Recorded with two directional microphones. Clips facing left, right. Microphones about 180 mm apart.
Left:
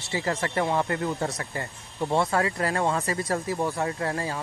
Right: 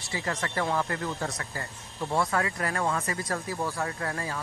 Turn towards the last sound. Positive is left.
turn(degrees=30)  # may be behind; listen again after turning